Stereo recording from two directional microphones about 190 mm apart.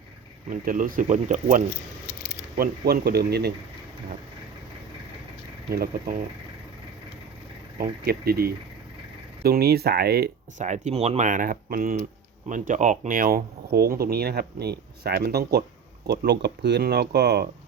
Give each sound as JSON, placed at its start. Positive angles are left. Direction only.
{"t": 0.5, "sound": "speech", "side_deg": -45}
{"t": 2.6, "sound": "speech", "side_deg": -55}
{"t": 5.7, "sound": "speech", "side_deg": -55}
{"t": 7.8, "sound": "speech", "side_deg": -55}
{"t": 10.6, "sound": "speech", "side_deg": -40}